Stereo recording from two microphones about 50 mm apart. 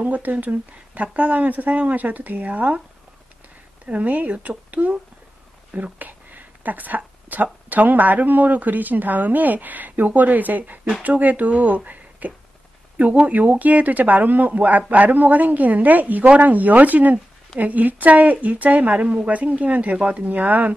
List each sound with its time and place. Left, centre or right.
0.0 s speech: right
3.8 s speech: right